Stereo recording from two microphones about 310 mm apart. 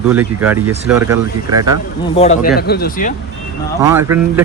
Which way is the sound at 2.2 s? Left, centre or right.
Left.